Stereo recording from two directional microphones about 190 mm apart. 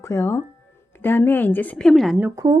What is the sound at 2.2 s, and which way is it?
Speech, 20° right (ahead or behind).